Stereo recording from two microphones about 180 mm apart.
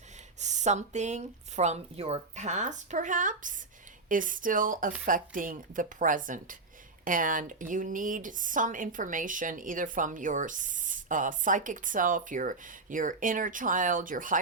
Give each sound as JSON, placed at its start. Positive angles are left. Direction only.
{"t": 0.3, "sound": "speech", "side_deg": -40}